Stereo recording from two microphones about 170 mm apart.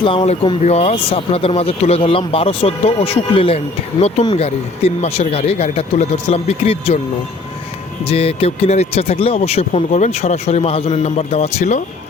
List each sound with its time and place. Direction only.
0.0 s speech: 30° left (ahead or behind)
8.0 s speech: 35° left (ahead or behind)